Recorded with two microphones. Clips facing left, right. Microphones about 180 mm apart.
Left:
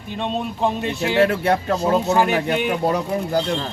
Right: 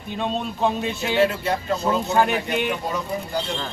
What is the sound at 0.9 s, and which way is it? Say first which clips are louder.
Speech: left 3 dB; 60° left (ahead or behind).